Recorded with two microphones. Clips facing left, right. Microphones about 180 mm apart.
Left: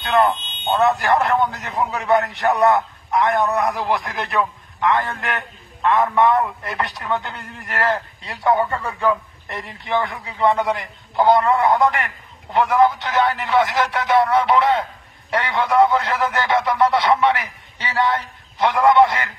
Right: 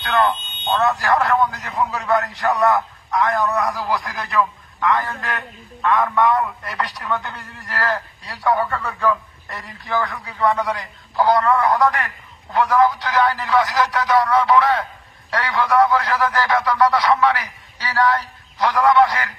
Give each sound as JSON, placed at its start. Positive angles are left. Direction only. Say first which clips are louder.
{"t": 0.7, "sound": "a man's voice", "louder": "left 1 dB", "side_deg": 25}